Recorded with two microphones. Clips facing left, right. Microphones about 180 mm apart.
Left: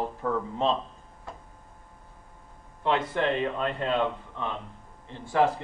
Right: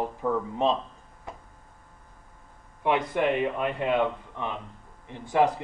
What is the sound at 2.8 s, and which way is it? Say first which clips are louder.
A man's voice: right 1 dB; 15° right (ahead or behind).